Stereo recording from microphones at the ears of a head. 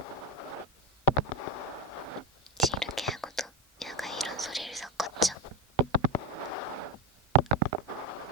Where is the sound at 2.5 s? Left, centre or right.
Centre.